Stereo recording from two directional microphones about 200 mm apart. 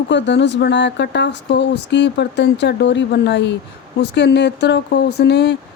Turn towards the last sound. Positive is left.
turn(degrees=55)  # may be behind; listen again after turning